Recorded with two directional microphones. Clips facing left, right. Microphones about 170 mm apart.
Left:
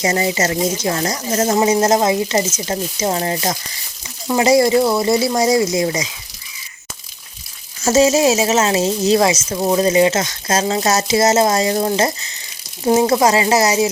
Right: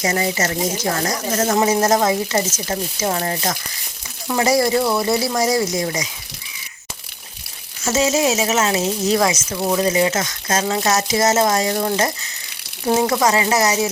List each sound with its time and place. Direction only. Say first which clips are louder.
0.0 s speech: left 3 dB; 20° left (ahead or behind)
7.9 s speech: left 5 dB; 35° left (ahead or behind)